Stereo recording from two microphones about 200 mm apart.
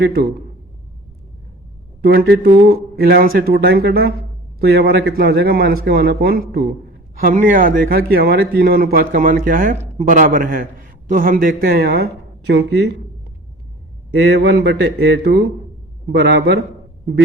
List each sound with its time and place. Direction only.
0.0 s speech: 55° right (ahead or behind)
2.0 s speech: 55° right (ahead or behind)
12.5 s speech: 60° right (ahead or behind)
14.2 s speech: 60° right (ahead or behind)